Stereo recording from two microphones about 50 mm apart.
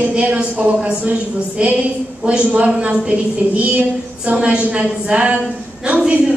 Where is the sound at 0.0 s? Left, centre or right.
Right.